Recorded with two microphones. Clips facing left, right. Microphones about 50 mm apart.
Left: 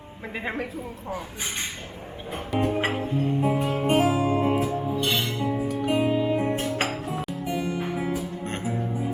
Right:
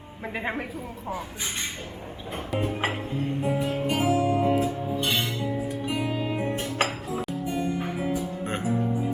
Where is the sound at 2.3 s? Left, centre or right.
Centre.